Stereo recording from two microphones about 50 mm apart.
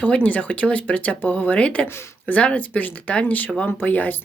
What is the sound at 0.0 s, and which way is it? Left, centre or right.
Speech, left.